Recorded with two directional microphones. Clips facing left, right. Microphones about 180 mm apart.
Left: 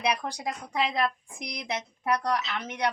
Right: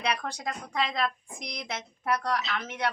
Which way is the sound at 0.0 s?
10° left (ahead or behind).